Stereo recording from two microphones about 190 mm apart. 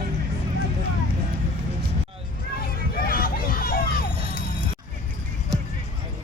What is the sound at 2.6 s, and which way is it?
Vehicle, 50° left (ahead or behind).